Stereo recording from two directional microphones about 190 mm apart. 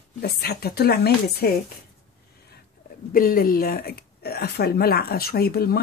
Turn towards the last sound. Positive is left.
turn(degrees=55)  # may be behind; listen again after turning